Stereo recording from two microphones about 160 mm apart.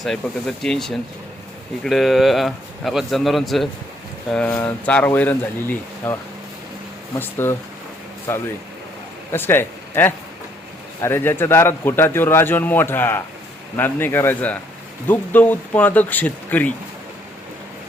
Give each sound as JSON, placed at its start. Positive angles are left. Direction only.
{"t": 0.0, "sound": "a man's voice", "side_deg": 0}
{"t": 7.2, "sound": "a man's voice", "side_deg": 15}